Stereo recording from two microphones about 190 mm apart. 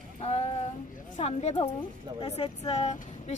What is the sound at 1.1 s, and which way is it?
Speech, 35° left (ahead or behind).